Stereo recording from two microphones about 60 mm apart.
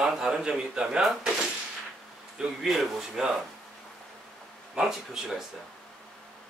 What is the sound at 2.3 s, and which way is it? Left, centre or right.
A man's voice, centre.